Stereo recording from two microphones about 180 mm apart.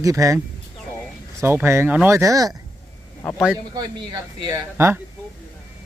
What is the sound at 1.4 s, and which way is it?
Speech, 15° right (ahead or behind).